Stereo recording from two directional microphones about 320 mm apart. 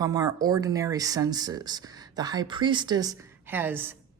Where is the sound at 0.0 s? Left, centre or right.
Centre.